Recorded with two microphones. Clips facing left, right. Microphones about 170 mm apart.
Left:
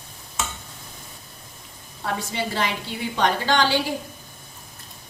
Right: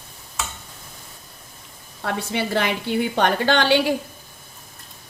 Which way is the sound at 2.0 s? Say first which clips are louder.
Right 2 dB; 65° right (ahead or behind).